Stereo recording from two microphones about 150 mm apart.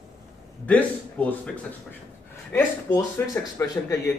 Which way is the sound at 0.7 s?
10° left (ahead or behind).